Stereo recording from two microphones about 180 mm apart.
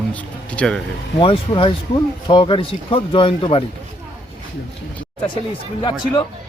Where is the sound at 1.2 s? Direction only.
30° left (ahead or behind).